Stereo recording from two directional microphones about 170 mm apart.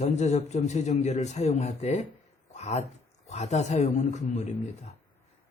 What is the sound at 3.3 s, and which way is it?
A man's voice, 40° left (ahead or behind).